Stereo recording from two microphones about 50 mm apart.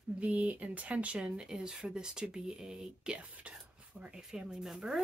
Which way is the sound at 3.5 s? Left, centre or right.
Centre.